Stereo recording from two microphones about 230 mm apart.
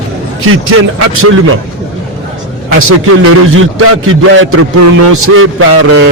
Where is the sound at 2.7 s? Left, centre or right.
Right.